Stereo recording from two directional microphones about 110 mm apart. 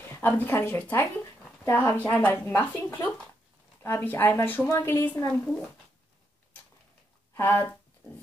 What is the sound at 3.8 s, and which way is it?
Speech, 20° left (ahead or behind).